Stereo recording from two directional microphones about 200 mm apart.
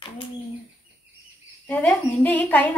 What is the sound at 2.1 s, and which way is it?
Speech, 10° left (ahead or behind).